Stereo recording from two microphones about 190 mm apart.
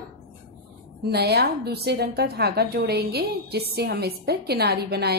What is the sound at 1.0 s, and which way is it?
A woman's voice, 60° right (ahead or behind).